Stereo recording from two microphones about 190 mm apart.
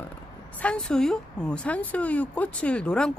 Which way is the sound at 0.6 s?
5° left (ahead or behind).